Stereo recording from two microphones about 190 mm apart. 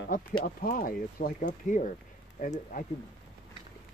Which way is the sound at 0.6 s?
50° left (ahead or behind).